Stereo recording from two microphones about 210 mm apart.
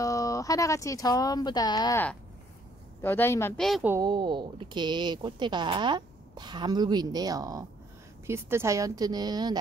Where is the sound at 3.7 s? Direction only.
5° right (ahead or behind).